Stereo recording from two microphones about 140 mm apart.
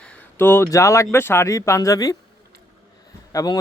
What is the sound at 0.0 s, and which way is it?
Speech, 10° left (ahead or behind).